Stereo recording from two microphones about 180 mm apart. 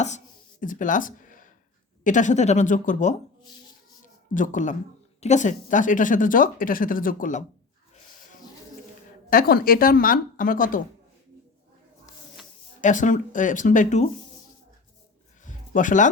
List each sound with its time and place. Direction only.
0.6 s a woman's voice: 45° left (ahead or behind)
4.0 s a sound: 45° left (ahead or behind)
5.2 s a woman's voice: 40° left (ahead or behind)
9.3 s a woman's voice: 55° left (ahead or behind)
12.8 s a woman's voice: 45° left (ahead or behind)
15.4 s a sound: 45° left (ahead or behind)